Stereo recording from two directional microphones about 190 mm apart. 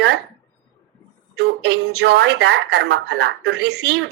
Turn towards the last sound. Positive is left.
turn(degrees=-60)  # may be behind; listen again after turning